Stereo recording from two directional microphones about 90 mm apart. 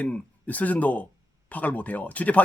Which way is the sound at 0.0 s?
15° left (ahead or behind).